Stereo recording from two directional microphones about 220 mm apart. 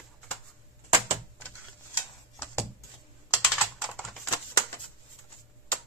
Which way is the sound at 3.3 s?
5° right (ahead or behind).